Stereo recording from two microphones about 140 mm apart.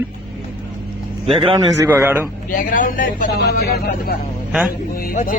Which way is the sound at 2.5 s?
70° left (ahead or behind).